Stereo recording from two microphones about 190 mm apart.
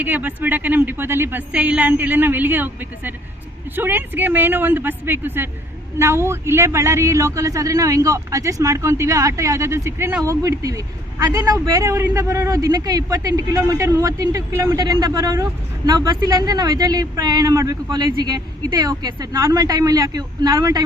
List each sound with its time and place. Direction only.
0.0 s speech: 10° right (ahead or behind)